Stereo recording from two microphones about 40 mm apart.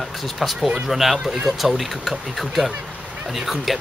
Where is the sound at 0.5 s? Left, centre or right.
Centre.